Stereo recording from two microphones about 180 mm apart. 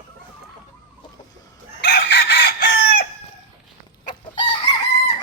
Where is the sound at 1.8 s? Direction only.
70° left (ahead or behind).